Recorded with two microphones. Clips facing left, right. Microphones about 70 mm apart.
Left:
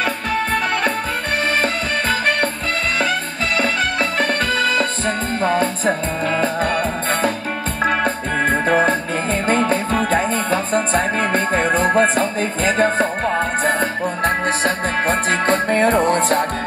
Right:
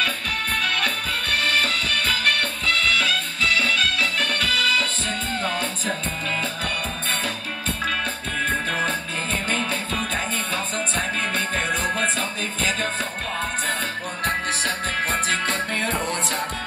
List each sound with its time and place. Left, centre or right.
0.0 s music: left